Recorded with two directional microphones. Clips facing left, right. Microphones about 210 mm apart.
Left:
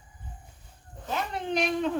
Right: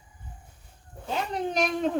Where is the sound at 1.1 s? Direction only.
45° right (ahead or behind).